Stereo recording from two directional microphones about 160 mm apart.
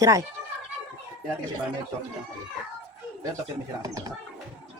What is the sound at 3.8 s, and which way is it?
Speech, 25° right (ahead or behind).